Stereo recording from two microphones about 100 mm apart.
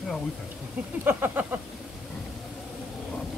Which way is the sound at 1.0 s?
15° right (ahead or behind).